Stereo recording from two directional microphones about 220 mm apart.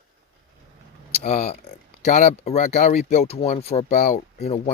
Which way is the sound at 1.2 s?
30° left (ahead or behind).